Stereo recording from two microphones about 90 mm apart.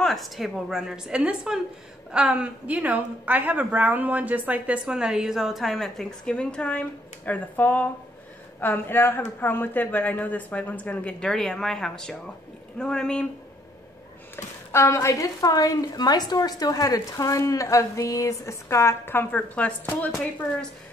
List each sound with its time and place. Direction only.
0.0 s a woman's voice: centre (ahead or behind)
14.3 s a woman's voice: 30° left (ahead or behind)